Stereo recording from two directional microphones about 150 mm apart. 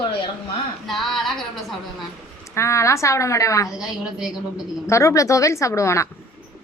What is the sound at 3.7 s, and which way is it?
Speech, 5° right (ahead or behind).